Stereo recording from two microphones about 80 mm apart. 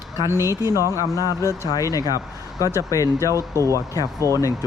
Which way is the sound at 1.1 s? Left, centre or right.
Left.